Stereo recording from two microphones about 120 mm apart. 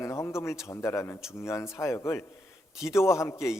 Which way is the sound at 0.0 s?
25° left (ahead or behind).